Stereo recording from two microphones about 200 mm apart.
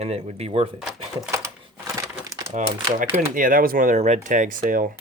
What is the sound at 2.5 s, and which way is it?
Speech, 40° right (ahead or behind).